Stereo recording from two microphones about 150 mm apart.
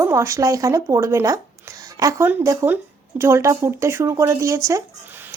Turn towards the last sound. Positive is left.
turn(degrees=-15)  # may be behind; listen again after turning